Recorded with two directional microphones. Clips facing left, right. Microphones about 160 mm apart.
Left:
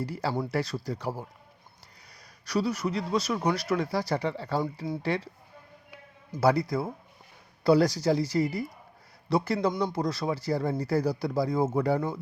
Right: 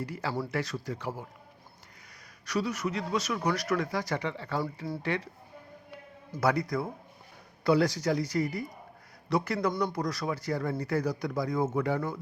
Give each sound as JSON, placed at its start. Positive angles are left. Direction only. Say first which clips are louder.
{"t": 0.0, "sound": "speech", "louder": "left 3 dB", "side_deg": 35}
{"t": 2.5, "sound": "speech", "louder": "left 3 dB", "side_deg": 35}
{"t": 6.4, "sound": "speech", "louder": "left 3 dB", "side_deg": 30}